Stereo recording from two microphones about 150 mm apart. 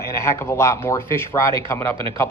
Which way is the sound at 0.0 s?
15° left (ahead or behind).